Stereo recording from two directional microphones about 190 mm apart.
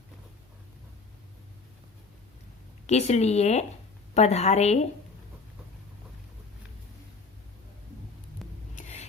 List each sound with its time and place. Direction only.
2.8 s a woman's voice: 35° left (ahead or behind)
8.7 s music: 40° left (ahead or behind)